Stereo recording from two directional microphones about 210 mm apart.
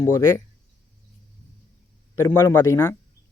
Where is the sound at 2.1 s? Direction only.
15° left (ahead or behind).